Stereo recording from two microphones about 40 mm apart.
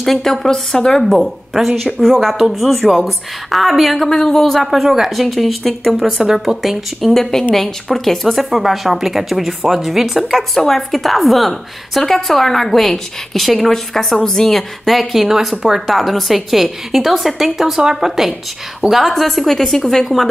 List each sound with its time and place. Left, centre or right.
0.0 s a woman's voice: centre
1.1 s speech: centre
1.7 s a woman's voice: centre
2.0 s a woman's voice: centre
7.2 s a woman's voice: centre
14.9 s a woman's voice: centre
17.7 s a woman's voice: centre